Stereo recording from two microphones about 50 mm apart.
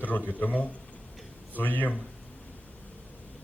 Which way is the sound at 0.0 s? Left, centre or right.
Left.